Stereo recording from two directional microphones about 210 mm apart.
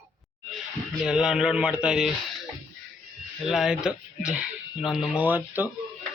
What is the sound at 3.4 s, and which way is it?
Speech, centre (ahead or behind).